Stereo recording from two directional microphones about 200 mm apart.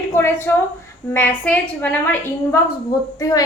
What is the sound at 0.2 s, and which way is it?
A woman's voice, 10° left (ahead or behind).